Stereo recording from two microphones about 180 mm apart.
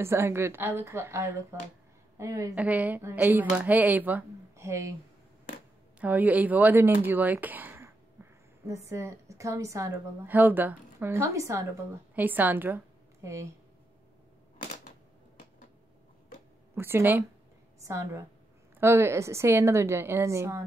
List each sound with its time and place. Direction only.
0.0 s a woman's voice: 15° right (ahead or behind)
5.9 s a woman's voice: 10° right (ahead or behind)
16.7 s a woman's voice: 15° right (ahead or behind)